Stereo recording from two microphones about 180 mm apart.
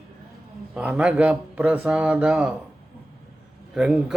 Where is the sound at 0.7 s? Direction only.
5° right (ahead or behind).